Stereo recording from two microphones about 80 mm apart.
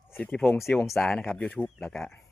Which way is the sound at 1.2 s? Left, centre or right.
Centre.